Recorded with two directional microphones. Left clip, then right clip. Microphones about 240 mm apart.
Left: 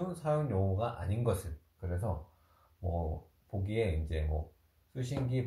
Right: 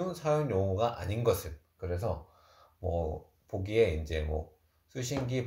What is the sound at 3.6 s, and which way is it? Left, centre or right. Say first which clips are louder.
Speech: right 7 dB; right.